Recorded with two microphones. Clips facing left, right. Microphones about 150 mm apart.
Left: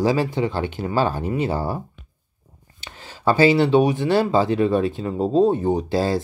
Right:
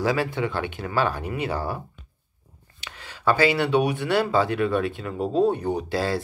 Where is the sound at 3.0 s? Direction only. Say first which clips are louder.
Left 4 dB; 30° left (ahead or behind).